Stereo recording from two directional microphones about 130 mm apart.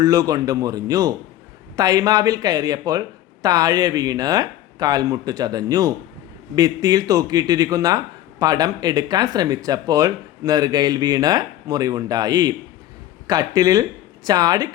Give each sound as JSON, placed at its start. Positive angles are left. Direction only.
{"t": 0.0, "sound": "speech", "side_deg": -25}